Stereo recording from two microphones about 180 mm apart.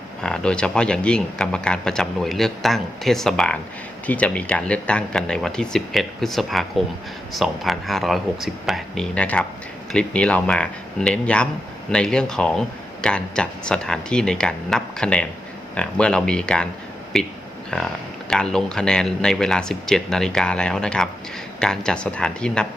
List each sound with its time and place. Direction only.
0.2 s speech: 5° left (ahead or behind)